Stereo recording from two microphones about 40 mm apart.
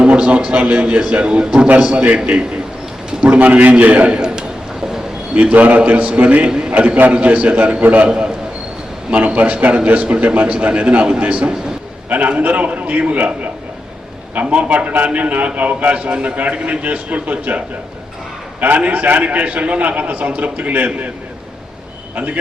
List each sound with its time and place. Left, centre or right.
0.5 s a man's voice: right
1.5 s a man's voice: right
5.3 s a man's voice: right
6.5 s a sound: centre
6.7 s a man's voice: right
12.0 s a man's voice: right
18.9 s a man's voice: right
22.1 s a man's voice: right